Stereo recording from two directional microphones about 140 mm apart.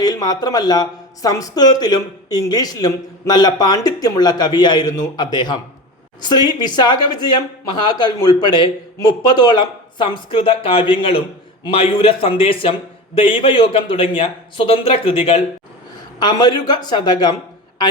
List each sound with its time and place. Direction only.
0.0 s speech: 30° left (ahead or behind)
16.1 s speech: 30° left (ahead or behind)